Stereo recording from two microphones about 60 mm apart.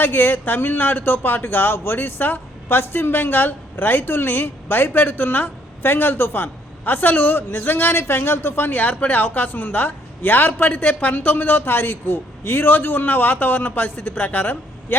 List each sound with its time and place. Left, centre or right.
0.0 s speech: left
10.8 s a man's voice: left